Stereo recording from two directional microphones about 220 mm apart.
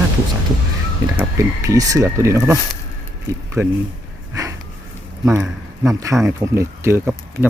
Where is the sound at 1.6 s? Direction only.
15° right (ahead or behind).